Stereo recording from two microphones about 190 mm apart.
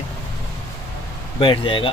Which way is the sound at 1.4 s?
25° left (ahead or behind).